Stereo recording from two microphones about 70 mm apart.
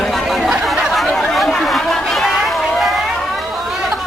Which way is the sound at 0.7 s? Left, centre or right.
Centre.